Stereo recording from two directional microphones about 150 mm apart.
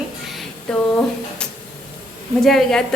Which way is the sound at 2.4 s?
5° left (ahead or behind).